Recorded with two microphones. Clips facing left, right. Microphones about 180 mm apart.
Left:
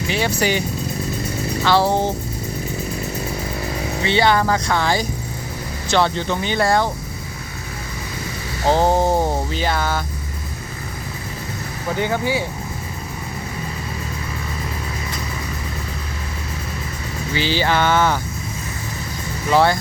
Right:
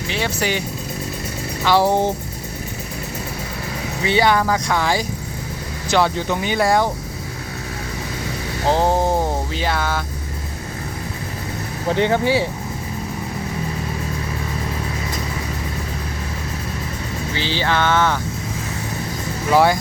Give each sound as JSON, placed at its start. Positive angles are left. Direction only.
{"t": 0.1, "sound": "speech", "side_deg": 0}
{"t": 1.6, "sound": "speech", "side_deg": -15}
{"t": 4.0, "sound": "speech", "side_deg": -10}
{"t": 8.7, "sound": "music", "side_deg": 0}
{"t": 11.9, "sound": "speech", "side_deg": -25}
{"t": 17.3, "sound": "speech", "side_deg": 10}
{"t": 19.5, "sound": "speech", "side_deg": -10}